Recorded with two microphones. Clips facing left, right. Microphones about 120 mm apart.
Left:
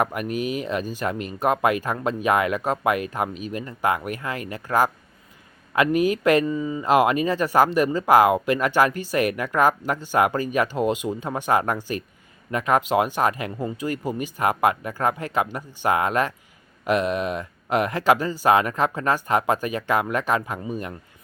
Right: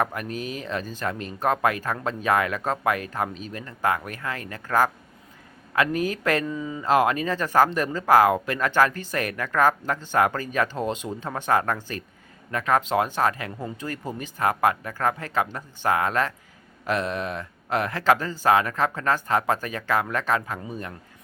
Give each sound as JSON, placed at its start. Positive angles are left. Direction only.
{"t": 0.0, "sound": "speech", "side_deg": 15}
{"t": 6.4, "sound": "speech", "side_deg": 5}
{"t": 6.8, "sound": "speech", "side_deg": 15}